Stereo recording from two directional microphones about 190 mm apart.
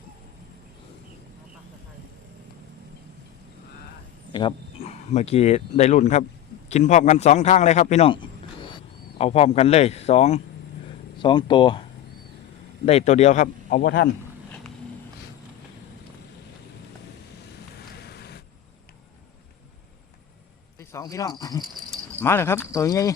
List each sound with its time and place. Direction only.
4.3 s a man's voice: 25° left (ahead or behind)
11.2 s speech: 25° left (ahead or behind)
12.8 s a man's voice: 35° left (ahead or behind)
13.8 s speech: 70° left (ahead or behind)
18.0 s vehicle: 55° left (ahead or behind)
20.7 s speech: 15° left (ahead or behind)